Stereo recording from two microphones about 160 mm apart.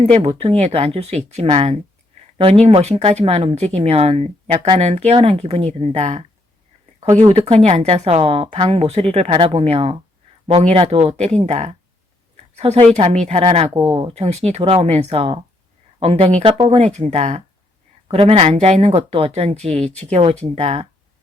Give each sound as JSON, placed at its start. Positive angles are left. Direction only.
{"t": 0.0, "sound": "speech", "side_deg": -40}